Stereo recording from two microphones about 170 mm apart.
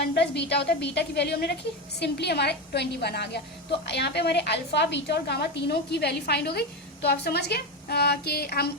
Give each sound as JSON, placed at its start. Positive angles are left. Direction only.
{"t": 0.1, "sound": "a woman's voice", "side_deg": 80}